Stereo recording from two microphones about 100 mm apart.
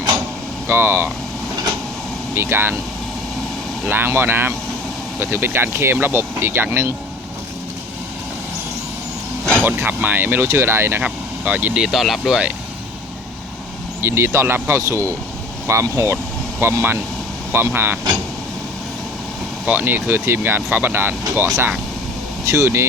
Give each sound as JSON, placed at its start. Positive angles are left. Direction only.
{"t": 0.7, "sound": "speech", "side_deg": -25}
{"t": 2.3, "sound": "speech", "side_deg": -25}
{"t": 3.8, "sound": "speech", "side_deg": -20}
{"t": 9.6, "sound": "speech", "side_deg": -20}
{"t": 11.9, "sound": "speech", "side_deg": 0}
{"t": 14.0, "sound": "speech", "side_deg": -25}
{"t": 19.6, "sound": "speech", "side_deg": -20}
{"t": 21.4, "sound": "speech", "side_deg": -35}